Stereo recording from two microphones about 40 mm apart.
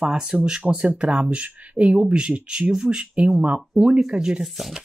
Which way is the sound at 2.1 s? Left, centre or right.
Right.